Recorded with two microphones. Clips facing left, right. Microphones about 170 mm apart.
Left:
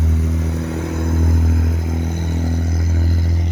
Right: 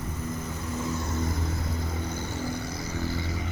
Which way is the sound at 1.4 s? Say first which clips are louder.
Left 10 dB; 90° left.